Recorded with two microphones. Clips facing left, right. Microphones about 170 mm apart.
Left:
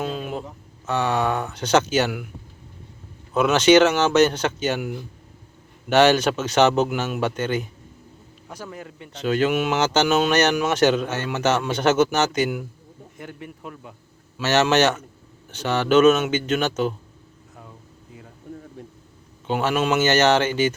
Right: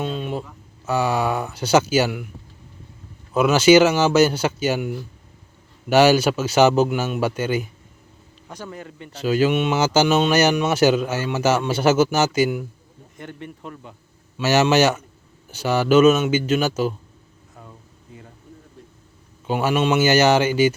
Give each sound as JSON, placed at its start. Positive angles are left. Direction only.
{"t": 0.0, "sound": "a sound", "side_deg": 5}
{"t": 0.9, "sound": "speech", "side_deg": -10}
{"t": 3.3, "sound": "speech", "side_deg": -5}
{"t": 5.9, "sound": "speech", "side_deg": -10}
{"t": 8.4, "sound": "speech", "side_deg": 0}
{"t": 14.4, "sound": "speech", "side_deg": -10}
{"t": 17.6, "sound": "air conditioning", "side_deg": 0}
{"t": 18.8, "sound": "air conditioning", "side_deg": 60}
{"t": 19.5, "sound": "speech", "side_deg": -5}